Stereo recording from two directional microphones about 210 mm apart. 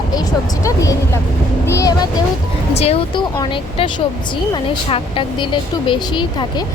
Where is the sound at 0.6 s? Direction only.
15° left (ahead or behind).